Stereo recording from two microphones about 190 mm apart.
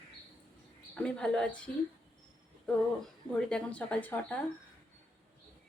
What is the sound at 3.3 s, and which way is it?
Speech, 5° left (ahead or behind).